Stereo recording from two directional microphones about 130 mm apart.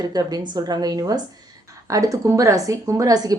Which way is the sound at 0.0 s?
30° right (ahead or behind).